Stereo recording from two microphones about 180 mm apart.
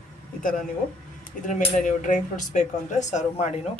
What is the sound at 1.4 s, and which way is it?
Speech, 45° left (ahead or behind).